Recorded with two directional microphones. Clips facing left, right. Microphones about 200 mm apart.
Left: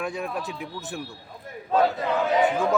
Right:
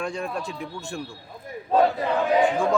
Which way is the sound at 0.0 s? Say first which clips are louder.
Right 1 dB; 5° left (ahead or behind).